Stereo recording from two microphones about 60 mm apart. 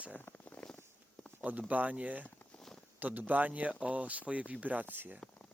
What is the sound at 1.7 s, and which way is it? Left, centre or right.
Speech, right.